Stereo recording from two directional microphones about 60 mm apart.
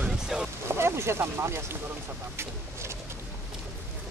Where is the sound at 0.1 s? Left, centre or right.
Centre.